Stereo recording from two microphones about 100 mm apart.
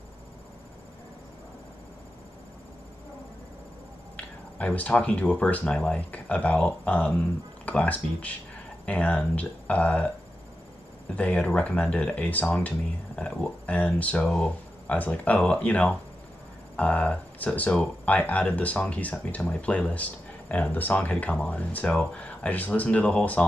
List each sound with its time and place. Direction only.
4.6 s speech: 15° left (ahead or behind)
11.1 s speech: 15° left (ahead or behind)